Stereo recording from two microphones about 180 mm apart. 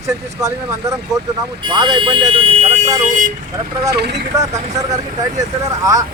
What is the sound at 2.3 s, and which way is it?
Vehicle, 30° right (ahead or behind).